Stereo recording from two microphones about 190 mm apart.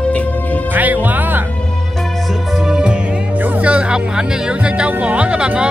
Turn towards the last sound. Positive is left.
turn(degrees=-5)  # may be behind; listen again after turning